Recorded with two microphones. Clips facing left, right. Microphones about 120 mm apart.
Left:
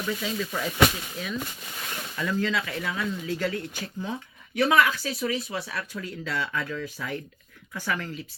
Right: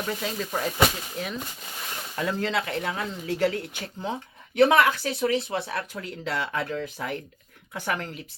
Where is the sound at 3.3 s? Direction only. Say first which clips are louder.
Right 7 dB; 60° right (ahead or behind).